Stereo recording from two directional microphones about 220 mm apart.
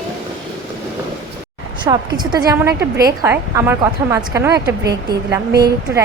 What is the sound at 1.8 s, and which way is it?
Speech, 20° right (ahead or behind).